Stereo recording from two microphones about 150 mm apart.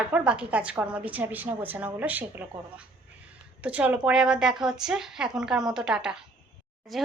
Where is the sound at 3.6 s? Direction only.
10° right (ahead or behind).